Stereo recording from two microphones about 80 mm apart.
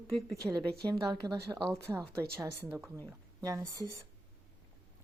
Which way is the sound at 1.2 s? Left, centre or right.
Right.